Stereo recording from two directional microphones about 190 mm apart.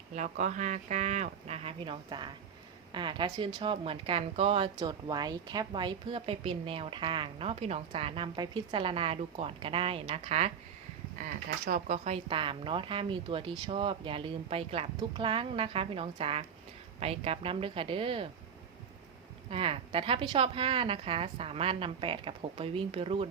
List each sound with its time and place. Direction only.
0.2 s speech: 40° right (ahead or behind)
11.2 s speech: 50° right (ahead or behind); by 18.3 s 30° right (ahead or behind)
19.5 s speech: 30° right (ahead or behind)